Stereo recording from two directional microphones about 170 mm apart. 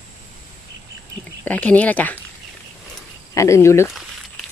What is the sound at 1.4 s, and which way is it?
Speech, 10° left (ahead or behind).